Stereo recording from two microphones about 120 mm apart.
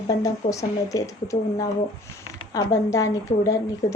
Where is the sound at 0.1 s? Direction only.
30° left (ahead or behind).